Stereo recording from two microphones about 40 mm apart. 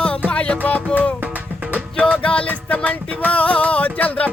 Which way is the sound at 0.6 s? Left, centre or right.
Left.